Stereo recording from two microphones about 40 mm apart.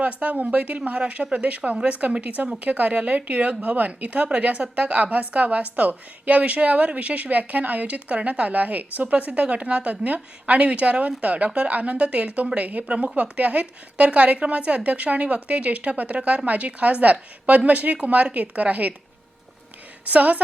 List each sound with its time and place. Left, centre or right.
0.0 s speech: right
20.1 s speech: right